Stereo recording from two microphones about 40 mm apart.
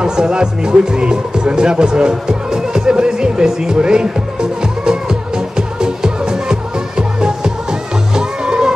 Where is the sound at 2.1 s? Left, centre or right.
Centre.